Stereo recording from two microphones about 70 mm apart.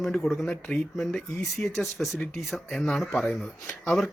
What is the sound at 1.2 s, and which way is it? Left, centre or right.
Speech, left.